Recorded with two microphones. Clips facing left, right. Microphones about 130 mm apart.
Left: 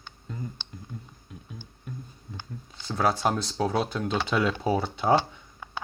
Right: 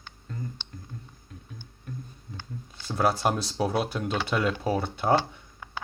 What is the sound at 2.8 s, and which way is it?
Speech, 5° right (ahead or behind).